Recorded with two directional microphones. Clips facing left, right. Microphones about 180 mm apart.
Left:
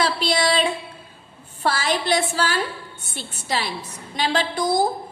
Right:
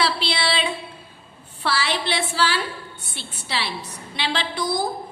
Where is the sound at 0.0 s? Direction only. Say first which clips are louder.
Left 3 dB; 45° left (ahead or behind).